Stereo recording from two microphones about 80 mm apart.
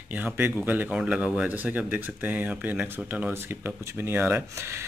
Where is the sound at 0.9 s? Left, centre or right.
Centre.